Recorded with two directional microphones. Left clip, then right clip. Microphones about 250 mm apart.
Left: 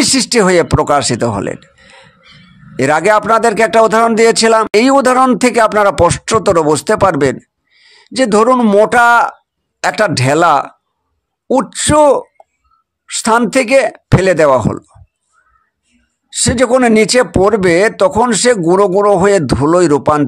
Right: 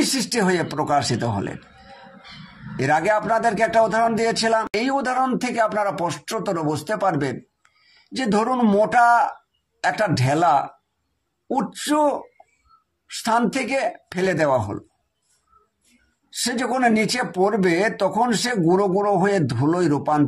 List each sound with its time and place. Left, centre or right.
0.0 s speech: left
16.3 s speech: left